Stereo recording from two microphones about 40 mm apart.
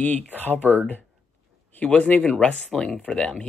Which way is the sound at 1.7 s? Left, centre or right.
Left.